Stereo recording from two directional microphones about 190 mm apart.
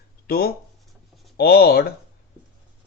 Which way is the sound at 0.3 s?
50° left (ahead or behind).